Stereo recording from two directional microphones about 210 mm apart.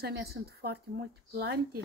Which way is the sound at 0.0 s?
50° right (ahead or behind).